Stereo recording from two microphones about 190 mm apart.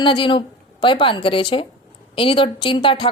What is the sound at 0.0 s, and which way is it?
A woman's voice, 25° left (ahead or behind).